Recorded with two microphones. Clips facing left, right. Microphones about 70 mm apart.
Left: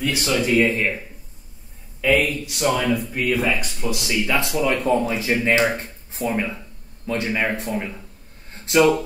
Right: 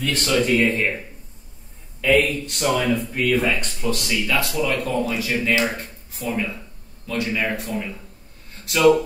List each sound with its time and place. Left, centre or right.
0.0 s speech: centre; by 8.9 s left